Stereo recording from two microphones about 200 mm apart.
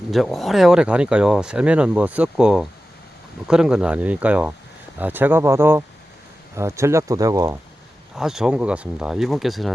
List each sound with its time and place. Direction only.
0.1 s speech: centre (ahead or behind); by 7.5 s 15° right (ahead or behind)
8.1 s speech: centre (ahead or behind)